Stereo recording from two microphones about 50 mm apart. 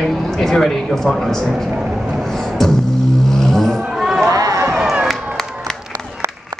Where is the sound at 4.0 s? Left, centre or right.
Centre.